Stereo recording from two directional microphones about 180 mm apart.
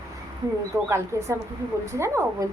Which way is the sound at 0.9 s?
15° right (ahead or behind).